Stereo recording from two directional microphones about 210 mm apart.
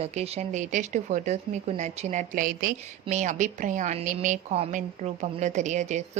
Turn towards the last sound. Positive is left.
turn(degrees=-35)  # may be behind; listen again after turning